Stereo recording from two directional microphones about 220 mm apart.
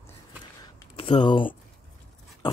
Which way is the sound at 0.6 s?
20° left (ahead or behind).